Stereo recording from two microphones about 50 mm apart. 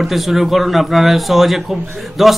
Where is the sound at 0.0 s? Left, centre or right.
Centre.